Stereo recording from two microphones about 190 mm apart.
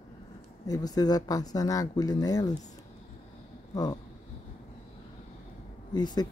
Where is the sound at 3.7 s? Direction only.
20° left (ahead or behind).